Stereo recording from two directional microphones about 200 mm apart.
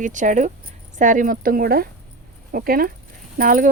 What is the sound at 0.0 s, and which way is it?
Speech, 40° right (ahead or behind).